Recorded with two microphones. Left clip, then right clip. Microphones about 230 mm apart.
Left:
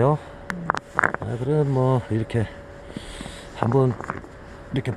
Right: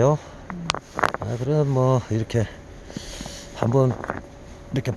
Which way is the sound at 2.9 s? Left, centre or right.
Centre.